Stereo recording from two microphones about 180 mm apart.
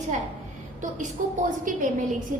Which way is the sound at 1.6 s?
45° right (ahead or behind).